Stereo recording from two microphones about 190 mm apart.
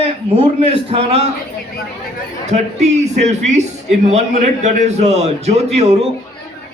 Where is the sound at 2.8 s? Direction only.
35° right (ahead or behind).